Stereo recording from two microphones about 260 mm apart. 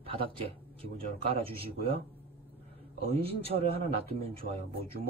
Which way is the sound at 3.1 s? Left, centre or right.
Right.